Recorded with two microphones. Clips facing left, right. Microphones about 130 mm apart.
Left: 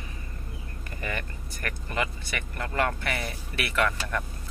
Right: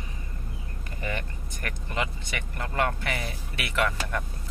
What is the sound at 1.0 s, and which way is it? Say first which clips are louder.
Speech: right 1 dB; 20° right (ahead or behind).